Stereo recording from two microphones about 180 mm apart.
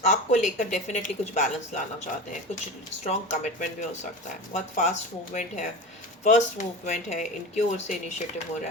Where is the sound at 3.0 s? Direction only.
40° left (ahead or behind).